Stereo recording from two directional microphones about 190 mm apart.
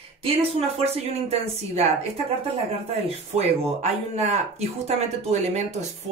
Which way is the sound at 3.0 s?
35° right (ahead or behind).